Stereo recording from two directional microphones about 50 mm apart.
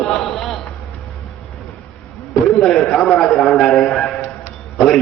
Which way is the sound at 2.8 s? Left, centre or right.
Centre.